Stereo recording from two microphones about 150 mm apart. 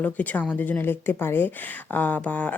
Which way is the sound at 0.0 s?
10° left (ahead or behind).